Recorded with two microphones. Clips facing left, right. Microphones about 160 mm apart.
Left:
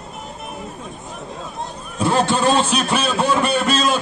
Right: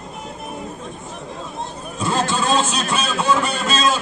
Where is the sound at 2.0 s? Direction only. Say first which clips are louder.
Left 4 dB; 60° left (ahead or behind).